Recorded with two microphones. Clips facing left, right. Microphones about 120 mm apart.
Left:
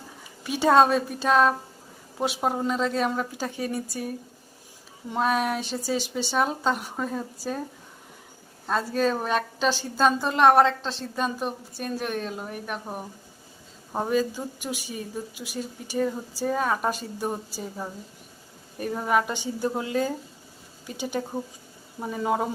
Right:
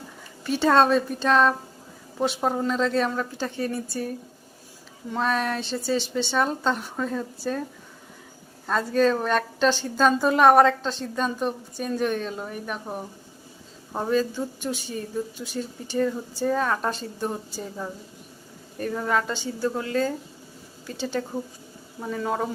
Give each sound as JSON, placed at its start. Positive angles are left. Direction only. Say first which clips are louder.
{"t": 0.4, "sound": "speech", "louder": "even", "side_deg": 10}
{"t": 5.1, "sound": "speech", "louder": "left 1 dB", "side_deg": 10}
{"t": 8.6, "sound": "a woman's voice", "louder": "right 3 dB", "side_deg": 5}